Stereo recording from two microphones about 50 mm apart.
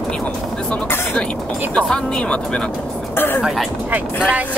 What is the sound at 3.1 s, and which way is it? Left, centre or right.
Speech, left.